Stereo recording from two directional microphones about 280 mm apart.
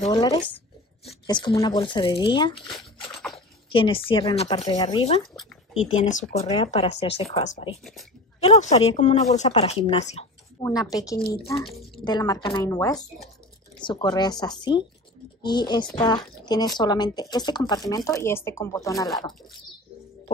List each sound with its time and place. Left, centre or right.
0.0 s a woman's voice: centre
5.8 s speech: left
6.3 s speech: centre
7.8 s speech: centre
8.4 s a woman's voice: left